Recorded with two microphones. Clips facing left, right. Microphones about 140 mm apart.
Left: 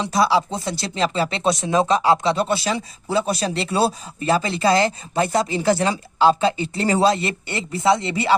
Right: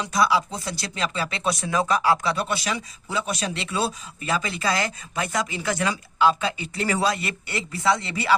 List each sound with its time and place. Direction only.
0.0 s speech: 30° left (ahead or behind)